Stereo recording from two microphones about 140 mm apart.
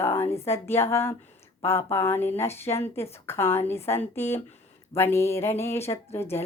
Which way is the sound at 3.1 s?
20° left (ahead or behind).